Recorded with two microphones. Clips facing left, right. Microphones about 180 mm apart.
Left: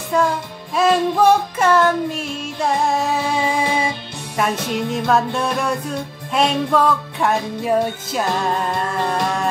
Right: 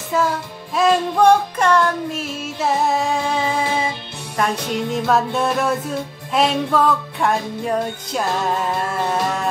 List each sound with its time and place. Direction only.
0.1 s music: 5° right (ahead or behind); by 3.9 s 10° left (ahead or behind)
4.4 s music: centre (ahead or behind)